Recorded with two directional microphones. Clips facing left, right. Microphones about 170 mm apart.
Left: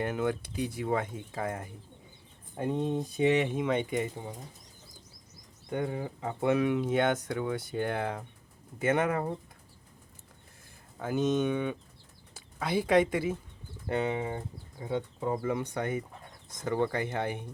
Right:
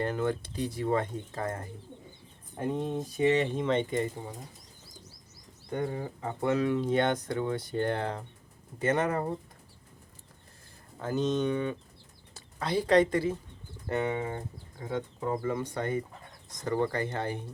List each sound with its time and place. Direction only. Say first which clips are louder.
0.0 s speech: right 1 dB; 10° left (ahead or behind)
2.7 s speech: left 4 dB; 10° right (ahead or behind)
3.2 s speech: right 1 dB; 10° left (ahead or behind)
5.7 s speech: even; 15° left (ahead or behind)
11.0 s speech: left 1 dB; 10° left (ahead or behind)